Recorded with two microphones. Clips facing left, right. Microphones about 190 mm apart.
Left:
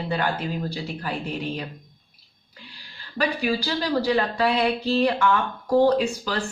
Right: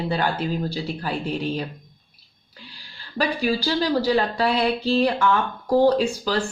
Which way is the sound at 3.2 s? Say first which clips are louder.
Right 2 dB; 35° right (ahead or behind).